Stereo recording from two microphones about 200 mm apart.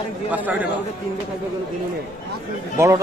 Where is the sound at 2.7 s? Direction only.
15° right (ahead or behind).